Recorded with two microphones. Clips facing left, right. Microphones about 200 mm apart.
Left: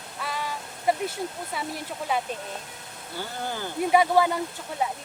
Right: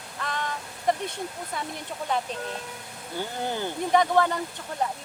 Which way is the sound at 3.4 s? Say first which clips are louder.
Right 3 dB; 20° right (ahead or behind).